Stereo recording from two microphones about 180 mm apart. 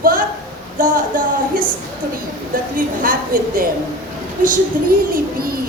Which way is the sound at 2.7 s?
50° right (ahead or behind).